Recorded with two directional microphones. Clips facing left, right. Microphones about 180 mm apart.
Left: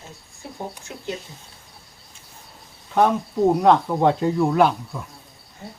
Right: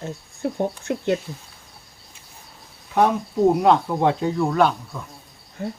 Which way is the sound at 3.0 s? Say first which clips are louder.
Even; 5° right (ahead or behind).